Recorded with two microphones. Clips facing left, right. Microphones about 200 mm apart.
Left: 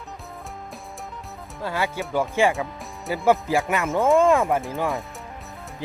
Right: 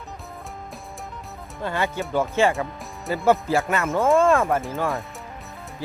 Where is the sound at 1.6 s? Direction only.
5° left (ahead or behind).